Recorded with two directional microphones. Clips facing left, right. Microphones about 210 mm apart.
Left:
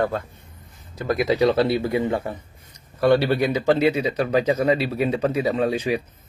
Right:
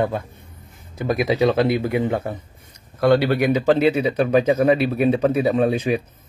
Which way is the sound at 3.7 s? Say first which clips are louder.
Right 1 dB; 15° left (ahead or behind).